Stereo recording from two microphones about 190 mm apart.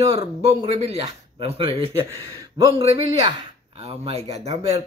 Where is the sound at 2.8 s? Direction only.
30° right (ahead or behind).